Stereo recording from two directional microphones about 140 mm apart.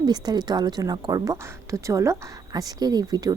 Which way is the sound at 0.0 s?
30° right (ahead or behind).